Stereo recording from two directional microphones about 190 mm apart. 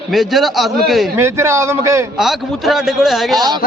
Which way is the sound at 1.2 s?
15° right (ahead or behind).